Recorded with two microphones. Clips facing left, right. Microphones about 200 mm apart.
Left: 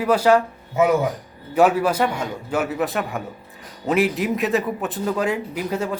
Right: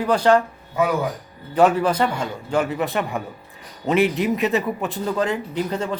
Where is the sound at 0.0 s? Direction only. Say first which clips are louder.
Even; 5° left (ahead or behind).